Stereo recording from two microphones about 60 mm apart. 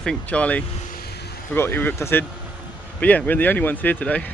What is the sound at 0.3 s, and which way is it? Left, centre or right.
Speech, left.